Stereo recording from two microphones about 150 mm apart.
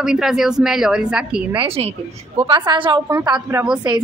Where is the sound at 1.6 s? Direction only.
40° right (ahead or behind).